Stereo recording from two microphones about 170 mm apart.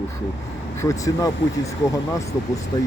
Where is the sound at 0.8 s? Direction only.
20° left (ahead or behind).